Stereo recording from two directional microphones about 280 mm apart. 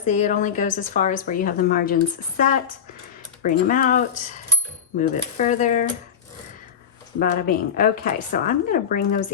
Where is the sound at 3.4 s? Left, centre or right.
Left.